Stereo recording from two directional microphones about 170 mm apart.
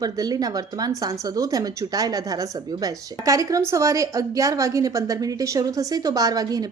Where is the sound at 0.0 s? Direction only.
20° right (ahead or behind).